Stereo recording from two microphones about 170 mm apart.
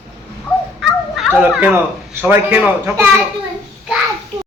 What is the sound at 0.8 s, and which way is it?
Children playing, centre (ahead or behind).